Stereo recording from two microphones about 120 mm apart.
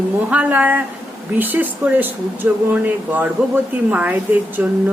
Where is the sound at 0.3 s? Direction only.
10° right (ahead or behind).